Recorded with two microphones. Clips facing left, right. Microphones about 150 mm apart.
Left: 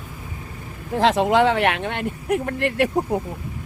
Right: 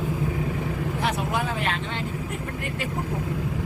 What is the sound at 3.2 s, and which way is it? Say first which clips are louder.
Speech: right 4 dB; 90° right.